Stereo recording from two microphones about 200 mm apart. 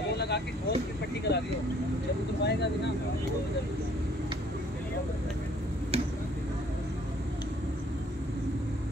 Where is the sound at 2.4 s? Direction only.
55° left (ahead or behind).